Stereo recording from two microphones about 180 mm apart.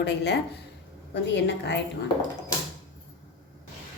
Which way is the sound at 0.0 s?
70° left (ahead or behind).